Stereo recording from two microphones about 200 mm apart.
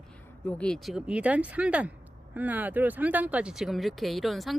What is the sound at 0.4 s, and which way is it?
Speech, 5° left (ahead or behind).